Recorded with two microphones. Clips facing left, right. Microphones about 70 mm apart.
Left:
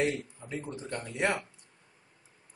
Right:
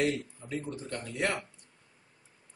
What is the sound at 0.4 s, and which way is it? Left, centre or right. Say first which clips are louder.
Speech: right 1 dB; centre.